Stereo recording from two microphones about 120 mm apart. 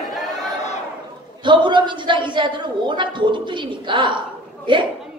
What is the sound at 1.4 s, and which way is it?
Speech, 40° right (ahead or behind).